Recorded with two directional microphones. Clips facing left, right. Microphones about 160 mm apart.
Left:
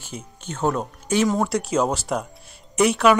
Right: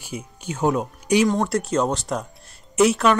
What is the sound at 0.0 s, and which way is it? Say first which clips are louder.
Speech: right 3 dB; 10° right (ahead or behind).